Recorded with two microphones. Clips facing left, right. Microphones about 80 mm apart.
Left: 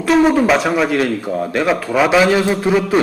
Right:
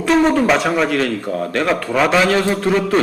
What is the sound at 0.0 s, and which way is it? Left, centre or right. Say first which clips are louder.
A man's voice: left 1 dB; centre.